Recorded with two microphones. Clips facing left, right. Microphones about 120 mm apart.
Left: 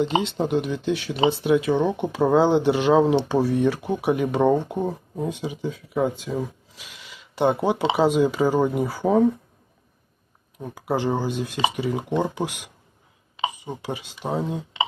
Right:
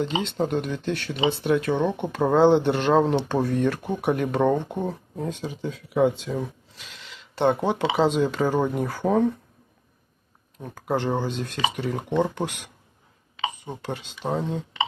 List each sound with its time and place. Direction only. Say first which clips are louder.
0.2 s speech: left 2 dB; 5° left (ahead or behind)
1.1 s speech: left 3 dB; 45° left (ahead or behind)
1.5 s speech: left 1 dB; 5° left (ahead or behind)
10.6 s speech: left 1 dB; 10° left (ahead or behind)